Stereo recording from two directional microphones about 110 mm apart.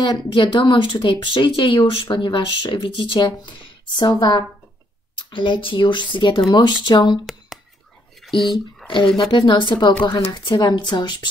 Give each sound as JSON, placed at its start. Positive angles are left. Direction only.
{"t": 0.0, "sound": "speech", "side_deg": 45}
{"t": 8.5, "sound": "speech", "side_deg": 5}
{"t": 8.9, "sound": "speech", "side_deg": 50}